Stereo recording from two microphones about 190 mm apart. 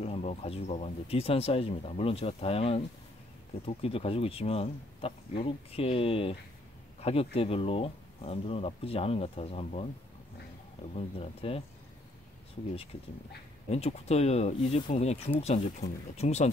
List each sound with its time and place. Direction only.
0.0 s speech: 35° left (ahead or behind)
11.1 s speech: 30° left (ahead or behind)
13.7 s speech: 35° left (ahead or behind)